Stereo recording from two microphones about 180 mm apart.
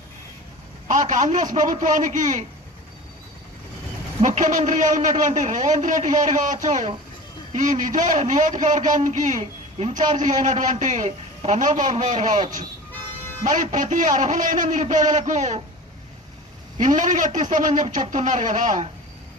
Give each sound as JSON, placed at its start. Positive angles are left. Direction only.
{"t": 0.9, "sound": "a man's voice", "side_deg": -45}
{"t": 4.2, "sound": "a man's voice", "side_deg": -45}
{"t": 16.8, "sound": "a man's voice", "side_deg": -45}